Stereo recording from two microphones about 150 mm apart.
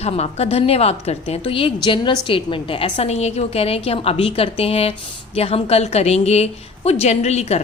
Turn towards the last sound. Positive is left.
turn(degrees=45)  # may be behind; listen again after turning